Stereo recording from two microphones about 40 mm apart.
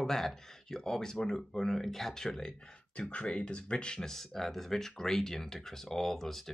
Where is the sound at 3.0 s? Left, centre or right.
Left.